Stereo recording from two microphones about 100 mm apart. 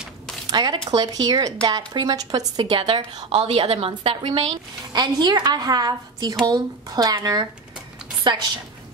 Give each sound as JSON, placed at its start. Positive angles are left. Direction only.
{"t": 0.5, "sound": "speech", "side_deg": -45}
{"t": 2.6, "sound": "speech", "side_deg": -55}
{"t": 3.3, "sound": "a woman's voice", "side_deg": -90}
{"t": 4.9, "sound": "a woman's voice", "side_deg": -45}